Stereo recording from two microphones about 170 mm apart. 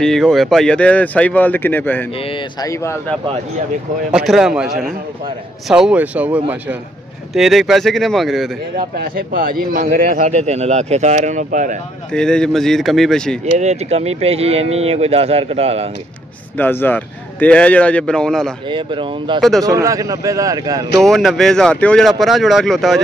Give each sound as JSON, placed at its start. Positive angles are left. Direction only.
{"t": 0.0, "sound": "speech", "side_deg": 5}
{"t": 2.2, "sound": "speech", "side_deg": 30}
{"t": 2.7, "sound": "speech", "side_deg": 15}
{"t": 4.1, "sound": "a man's voice", "side_deg": -5}
{"t": 8.7, "sound": "a man's voice", "side_deg": -60}
{"t": 10.2, "sound": "speech", "side_deg": -40}
{"t": 12.1, "sound": "speech", "side_deg": 5}
{"t": 13.6, "sound": "speech", "side_deg": -40}
{"t": 16.5, "sound": "speech", "side_deg": 10}
{"t": 18.7, "sound": "speech", "side_deg": -30}
{"t": 21.0, "sound": "speech", "side_deg": 0}